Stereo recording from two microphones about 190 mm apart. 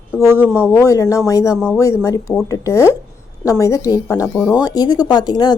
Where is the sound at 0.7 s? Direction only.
15° left (ahead or behind).